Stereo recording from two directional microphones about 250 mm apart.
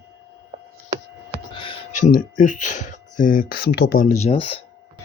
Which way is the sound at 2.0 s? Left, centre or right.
Left.